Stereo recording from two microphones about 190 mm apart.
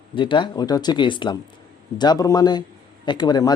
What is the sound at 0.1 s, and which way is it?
A man's voice, 25° left (ahead or behind).